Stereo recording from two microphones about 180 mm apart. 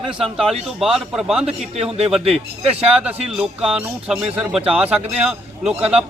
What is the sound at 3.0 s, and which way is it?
A man's voice, 5° right (ahead or behind).